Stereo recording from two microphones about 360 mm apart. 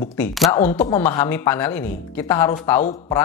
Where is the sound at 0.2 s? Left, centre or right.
Centre.